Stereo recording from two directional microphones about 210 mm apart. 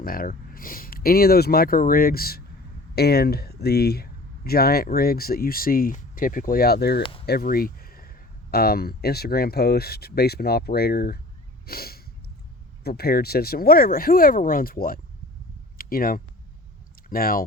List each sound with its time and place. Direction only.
0.0 s speech: 45° left (ahead or behind)
11.6 s snort: 45° left (ahead or behind)
12.8 s speech: 50° left (ahead or behind)